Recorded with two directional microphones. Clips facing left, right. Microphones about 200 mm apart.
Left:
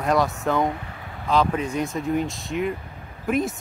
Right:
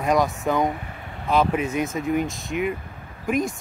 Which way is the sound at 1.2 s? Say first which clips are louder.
Right 1 dB; 10° right (ahead or behind).